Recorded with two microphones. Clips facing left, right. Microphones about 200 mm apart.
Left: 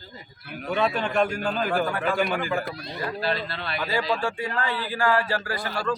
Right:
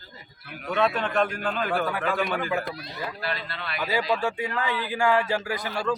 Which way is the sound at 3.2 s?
30° left (ahead or behind).